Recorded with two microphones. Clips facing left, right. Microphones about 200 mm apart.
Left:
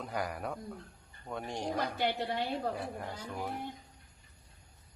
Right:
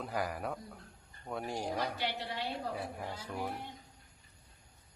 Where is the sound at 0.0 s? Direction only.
Centre (ahead or behind).